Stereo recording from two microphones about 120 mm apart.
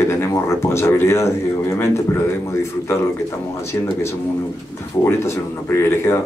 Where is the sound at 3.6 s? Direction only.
20° left (ahead or behind).